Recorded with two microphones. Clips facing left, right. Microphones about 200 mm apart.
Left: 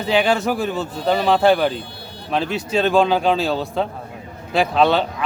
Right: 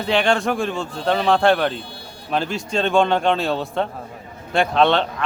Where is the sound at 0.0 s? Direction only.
Centre (ahead or behind).